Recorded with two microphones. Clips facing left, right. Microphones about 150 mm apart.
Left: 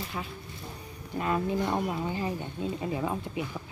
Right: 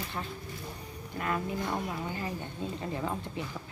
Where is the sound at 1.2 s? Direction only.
25° left (ahead or behind).